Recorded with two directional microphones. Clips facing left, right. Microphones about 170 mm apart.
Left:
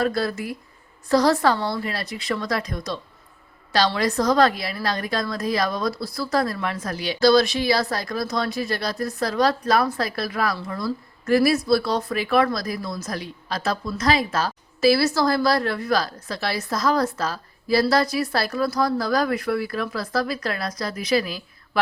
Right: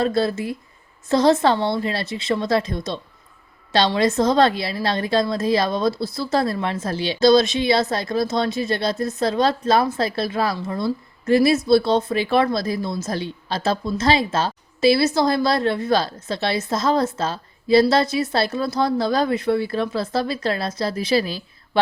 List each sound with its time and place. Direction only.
0.0 s a woman's voice: 25° right (ahead or behind)